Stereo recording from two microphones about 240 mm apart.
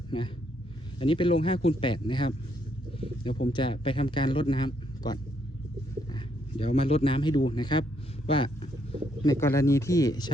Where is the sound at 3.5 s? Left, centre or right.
Left.